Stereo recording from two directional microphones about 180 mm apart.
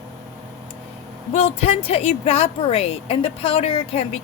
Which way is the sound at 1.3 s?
35° left (ahead or behind).